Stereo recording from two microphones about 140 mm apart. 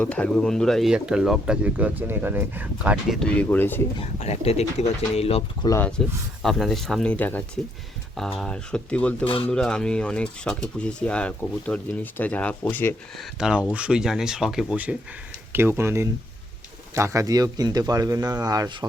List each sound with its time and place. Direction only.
0.0 s speech: 10° left (ahead or behind); by 3.2 s 5° right (ahead or behind)
3.2 s speech: 10° left (ahead or behind)
4.2 s speech: 50° left (ahead or behind)
5.6 s speech: 30° left (ahead or behind)
6.0 s speech: 5° left (ahead or behind)
9.2 s speech: 40° left (ahead or behind)
9.5 s speech: 5° left (ahead or behind)
13.1 s speech: 5° right (ahead or behind); by 18.9 s 25° right (ahead or behind)